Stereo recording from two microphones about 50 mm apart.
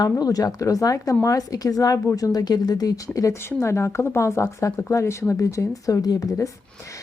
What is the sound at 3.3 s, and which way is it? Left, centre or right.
Speech, left.